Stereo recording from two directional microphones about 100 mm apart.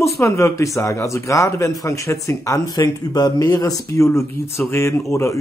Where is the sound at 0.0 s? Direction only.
30° left (ahead or behind).